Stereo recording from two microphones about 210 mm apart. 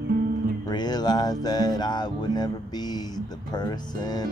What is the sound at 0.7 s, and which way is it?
Speech, 20° left (ahead or behind).